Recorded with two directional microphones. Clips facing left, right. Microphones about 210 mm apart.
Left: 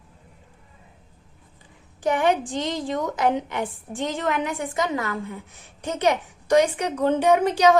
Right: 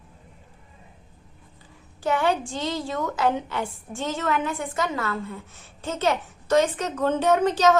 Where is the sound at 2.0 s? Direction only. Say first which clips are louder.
Left 2 dB; 15° left (ahead or behind).